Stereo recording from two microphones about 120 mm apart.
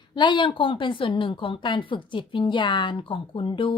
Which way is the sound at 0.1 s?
40° left (ahead or behind).